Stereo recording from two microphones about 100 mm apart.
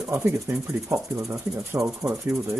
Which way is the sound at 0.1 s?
25° right (ahead or behind).